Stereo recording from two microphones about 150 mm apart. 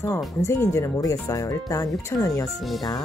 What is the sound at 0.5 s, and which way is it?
Speech, 20° left (ahead or behind).